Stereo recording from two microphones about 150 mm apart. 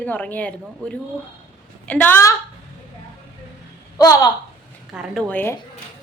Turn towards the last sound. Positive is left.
turn(degrees=10)  # may be behind; listen again after turning